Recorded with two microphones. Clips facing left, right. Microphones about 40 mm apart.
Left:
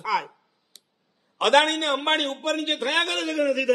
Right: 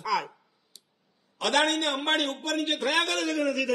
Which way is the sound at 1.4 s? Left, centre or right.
Left.